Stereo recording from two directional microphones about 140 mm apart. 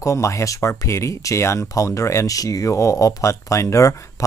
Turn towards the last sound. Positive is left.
turn(degrees=20)  # may be behind; listen again after turning